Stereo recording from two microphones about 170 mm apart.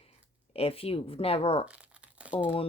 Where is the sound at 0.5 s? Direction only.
35° left (ahead or behind).